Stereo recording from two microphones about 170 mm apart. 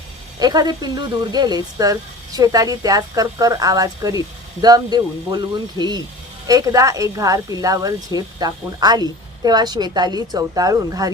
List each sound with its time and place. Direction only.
0.3 s speech: 25° right (ahead or behind)